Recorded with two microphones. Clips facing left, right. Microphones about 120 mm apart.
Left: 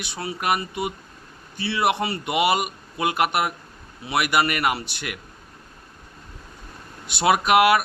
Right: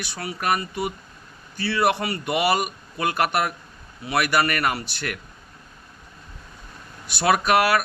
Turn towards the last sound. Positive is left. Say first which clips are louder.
# left 2 dB
turn(degrees=20)  # may be behind; listen again after turning